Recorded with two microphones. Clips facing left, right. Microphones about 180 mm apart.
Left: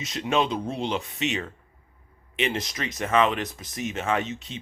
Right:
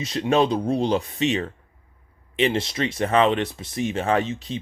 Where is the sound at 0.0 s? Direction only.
35° right (ahead or behind).